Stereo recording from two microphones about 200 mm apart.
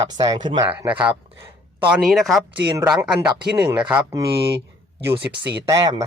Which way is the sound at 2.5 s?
25° right (ahead or behind).